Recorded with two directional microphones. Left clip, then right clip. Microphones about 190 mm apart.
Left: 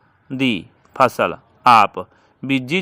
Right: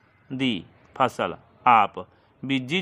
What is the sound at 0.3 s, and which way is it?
Speech, 30° left (ahead or behind).